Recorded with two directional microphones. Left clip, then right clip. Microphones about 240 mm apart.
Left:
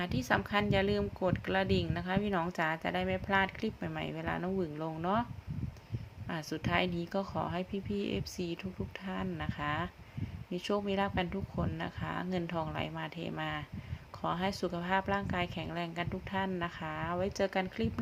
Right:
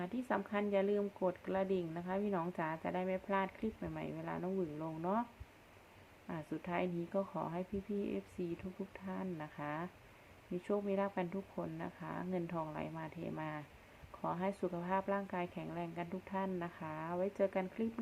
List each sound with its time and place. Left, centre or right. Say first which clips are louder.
0.0 s speech: left 7 dB; centre
6.2 s speech: left 6 dB; centre